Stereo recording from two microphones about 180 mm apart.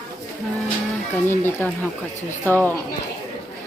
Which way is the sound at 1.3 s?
10° left (ahead or behind).